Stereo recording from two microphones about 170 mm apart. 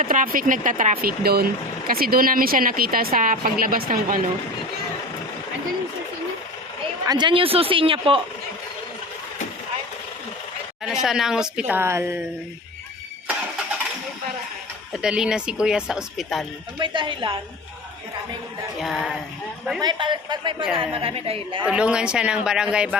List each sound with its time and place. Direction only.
0.0 s speech: 55° right (ahead or behind)
7.0 s speech: 25° right (ahead or behind)
10.8 s speech: 5° right (ahead or behind)
14.9 s speech: 5° right (ahead or behind)
16.8 s a man's voice: 30° right (ahead or behind)
18.8 s speech: centre (ahead or behind)
19.8 s a man's voice: 25° right (ahead or behind)
21.6 s speech: 5° right (ahead or behind)